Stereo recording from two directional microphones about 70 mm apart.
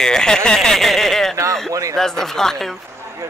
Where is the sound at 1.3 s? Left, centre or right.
Right.